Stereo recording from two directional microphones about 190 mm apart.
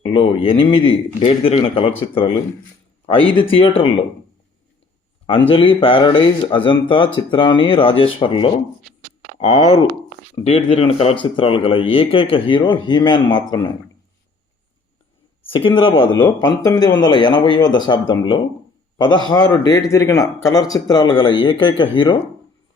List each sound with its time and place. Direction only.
0.0 s speech: 30° left (ahead or behind)
5.5 s speech: 30° left (ahead or behind)
15.4 s speech: 25° left (ahead or behind)